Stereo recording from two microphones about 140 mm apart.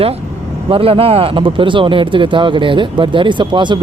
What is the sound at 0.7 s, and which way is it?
Speech, 40° right (ahead or behind).